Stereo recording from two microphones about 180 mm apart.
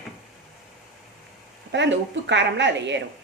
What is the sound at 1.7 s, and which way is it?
A woman's voice, 75° right (ahead or behind).